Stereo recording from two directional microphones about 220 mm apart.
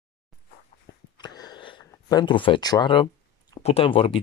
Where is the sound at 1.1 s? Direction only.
20° left (ahead or behind).